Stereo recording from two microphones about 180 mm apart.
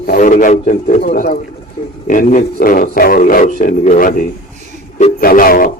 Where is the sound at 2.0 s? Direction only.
45° left (ahead or behind).